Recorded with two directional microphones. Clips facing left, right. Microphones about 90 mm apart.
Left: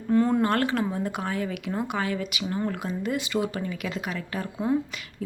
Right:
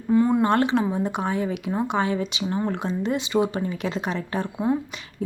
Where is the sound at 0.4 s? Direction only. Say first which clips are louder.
Right 4 dB; 20° right (ahead or behind).